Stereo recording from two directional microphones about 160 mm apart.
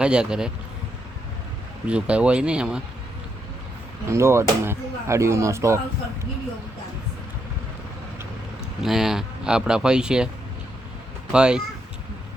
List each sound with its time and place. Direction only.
0.0 s speech: 5° right (ahead or behind)
1.9 s speech: 5° right (ahead or behind)
4.1 s speech: 15° right (ahead or behind)
8.8 s speech: centre (ahead or behind)
11.3 s speech: 5° right (ahead or behind)